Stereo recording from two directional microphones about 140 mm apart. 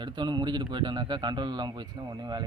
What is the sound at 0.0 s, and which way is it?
Speech, 30° right (ahead or behind).